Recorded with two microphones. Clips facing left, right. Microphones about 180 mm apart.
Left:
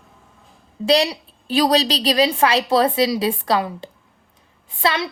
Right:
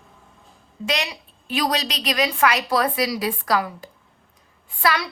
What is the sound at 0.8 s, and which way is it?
A woman's voice, 35° left (ahead or behind).